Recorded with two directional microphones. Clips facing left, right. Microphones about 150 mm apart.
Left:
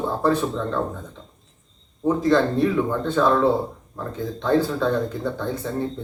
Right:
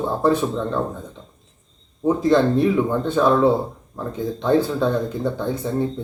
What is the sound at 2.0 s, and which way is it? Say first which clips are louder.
Speech: right 2 dB; 15° right (ahead or behind).